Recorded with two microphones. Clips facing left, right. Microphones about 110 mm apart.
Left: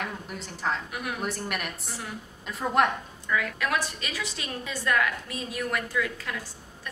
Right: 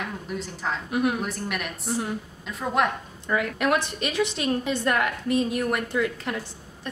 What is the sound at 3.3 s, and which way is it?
Speech, 35° right (ahead or behind).